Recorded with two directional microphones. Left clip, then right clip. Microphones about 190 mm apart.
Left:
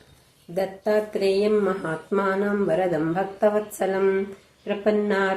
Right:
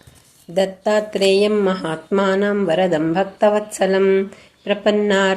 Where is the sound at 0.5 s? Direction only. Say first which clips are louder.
Right 6 dB; 30° right (ahead or behind).